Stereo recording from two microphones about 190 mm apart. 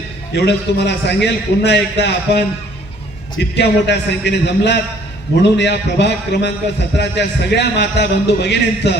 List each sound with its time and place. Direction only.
0.3 s a man's voice: 65° left (ahead or behind)